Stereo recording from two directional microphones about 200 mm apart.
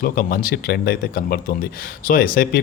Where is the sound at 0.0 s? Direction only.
45° left (ahead or behind).